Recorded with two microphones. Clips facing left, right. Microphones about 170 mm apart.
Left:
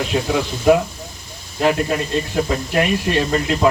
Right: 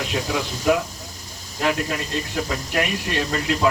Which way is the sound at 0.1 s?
30° left (ahead or behind).